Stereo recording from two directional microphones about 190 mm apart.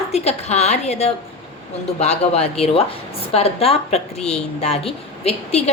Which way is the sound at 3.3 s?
30° left (ahead or behind).